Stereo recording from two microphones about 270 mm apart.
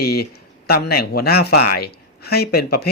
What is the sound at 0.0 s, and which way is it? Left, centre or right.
Speech, left.